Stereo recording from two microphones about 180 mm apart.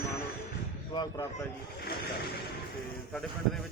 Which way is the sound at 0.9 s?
25° left (ahead or behind).